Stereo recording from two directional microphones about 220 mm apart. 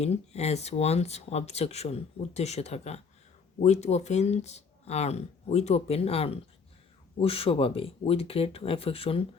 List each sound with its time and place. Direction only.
0.0 s speech: 30° left (ahead or behind)